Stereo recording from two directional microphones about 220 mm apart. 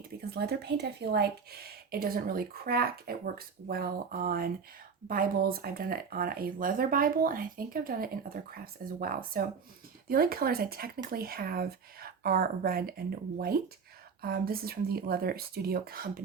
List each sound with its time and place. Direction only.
0.2 s speech: 45° right (ahead or behind)